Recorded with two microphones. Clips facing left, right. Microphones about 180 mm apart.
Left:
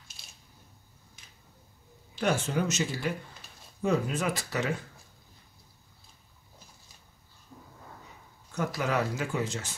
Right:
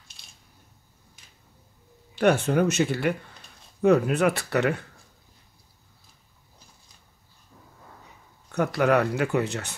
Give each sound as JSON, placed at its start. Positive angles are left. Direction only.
{"t": 2.1, "sound": "speech", "side_deg": -60}
{"t": 8.5, "sound": "speech", "side_deg": -65}